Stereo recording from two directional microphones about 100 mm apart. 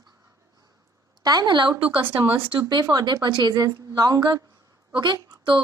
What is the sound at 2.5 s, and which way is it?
A woman's voice, 45° right (ahead or behind).